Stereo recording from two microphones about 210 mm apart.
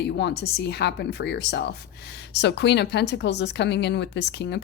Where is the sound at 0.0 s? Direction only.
55° left (ahead or behind).